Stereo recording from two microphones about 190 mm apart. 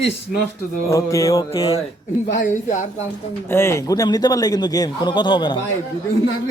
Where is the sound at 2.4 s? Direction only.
40° left (ahead or behind).